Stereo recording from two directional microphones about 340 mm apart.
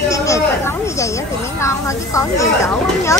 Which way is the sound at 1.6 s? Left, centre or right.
Centre.